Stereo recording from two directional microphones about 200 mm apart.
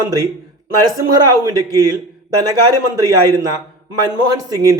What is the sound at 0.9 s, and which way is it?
A man's voice, 20° right (ahead or behind).